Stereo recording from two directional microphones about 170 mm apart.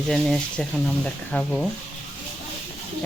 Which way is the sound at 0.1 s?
5° left (ahead or behind).